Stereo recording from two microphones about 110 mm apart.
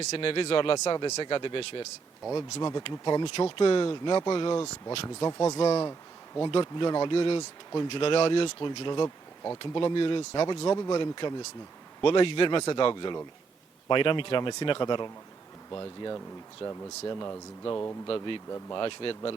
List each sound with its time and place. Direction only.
0.0 s speech: 65° left (ahead or behind); by 1.9 s 50° left (ahead or behind)
2.3 s speech: 40° left (ahead or behind)
3.2 s speech: 55° left (ahead or behind)
3.8 s speech: 40° left (ahead or behind)
5.0 s speech: 30° left (ahead or behind); by 9.0 s 45° left (ahead or behind)
9.0 s bee: 30° left (ahead or behind)
9.6 s speech: 50° left (ahead or behind)
16.6 s speech: 55° left (ahead or behind)
17.2 s speech: 25° left (ahead or behind)
18.1 s speech: 50° left (ahead or behind)